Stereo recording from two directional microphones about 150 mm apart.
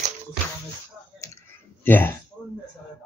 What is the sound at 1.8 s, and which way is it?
Speech, 15° left (ahead or behind).